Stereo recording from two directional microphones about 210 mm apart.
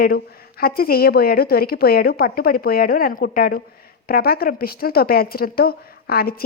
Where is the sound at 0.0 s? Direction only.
45° left (ahead or behind).